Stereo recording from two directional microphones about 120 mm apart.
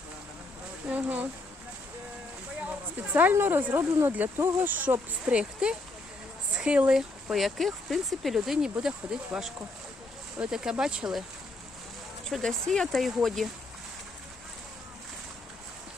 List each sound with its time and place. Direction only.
0.9 s speech: 10° right (ahead or behind)
3.1 s speech: 15° right (ahead or behind)
12.3 s speech: 5° left (ahead or behind)